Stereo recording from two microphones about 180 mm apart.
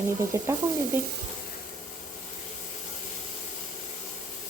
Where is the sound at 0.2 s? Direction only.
15° right (ahead or behind).